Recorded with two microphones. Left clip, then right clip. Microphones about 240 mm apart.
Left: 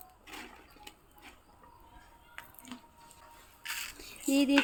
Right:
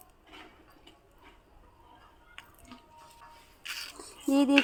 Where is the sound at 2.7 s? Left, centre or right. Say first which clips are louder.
Left 3 dB; left.